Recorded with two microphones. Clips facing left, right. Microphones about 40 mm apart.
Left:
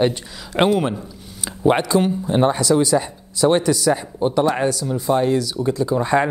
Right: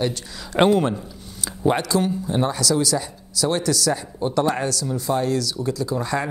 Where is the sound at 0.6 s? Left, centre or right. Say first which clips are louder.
Even; centre.